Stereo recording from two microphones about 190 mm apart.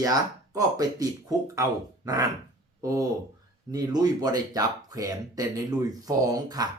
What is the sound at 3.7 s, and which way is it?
Speech, 20° right (ahead or behind).